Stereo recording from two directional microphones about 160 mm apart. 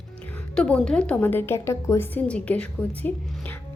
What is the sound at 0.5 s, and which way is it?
A woman's voice, 5° left (ahead or behind).